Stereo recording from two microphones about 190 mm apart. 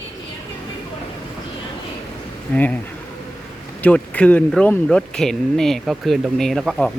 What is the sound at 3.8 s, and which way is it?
Speech, 5° left (ahead or behind).